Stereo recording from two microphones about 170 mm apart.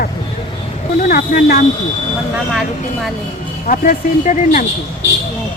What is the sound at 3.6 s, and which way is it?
Speech, 50° left (ahead or behind).